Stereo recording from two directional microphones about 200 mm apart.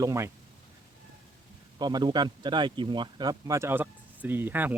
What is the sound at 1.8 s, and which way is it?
Speech, 20° right (ahead or behind).